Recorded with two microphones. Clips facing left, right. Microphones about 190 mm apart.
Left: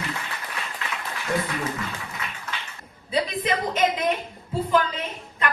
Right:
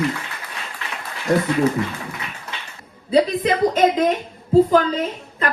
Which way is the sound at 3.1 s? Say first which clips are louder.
Right 8 dB; 35° right (ahead or behind).